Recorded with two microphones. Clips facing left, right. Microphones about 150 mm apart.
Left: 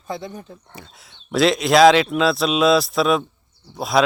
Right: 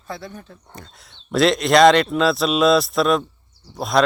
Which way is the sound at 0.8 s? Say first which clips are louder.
Even; 5° left (ahead or behind).